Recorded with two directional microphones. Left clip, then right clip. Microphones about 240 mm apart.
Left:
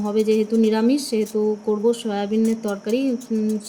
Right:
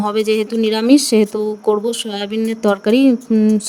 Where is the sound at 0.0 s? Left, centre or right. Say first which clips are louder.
Right 3 dB; right.